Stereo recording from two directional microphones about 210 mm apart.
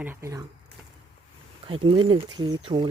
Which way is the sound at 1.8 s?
25° right (ahead or behind).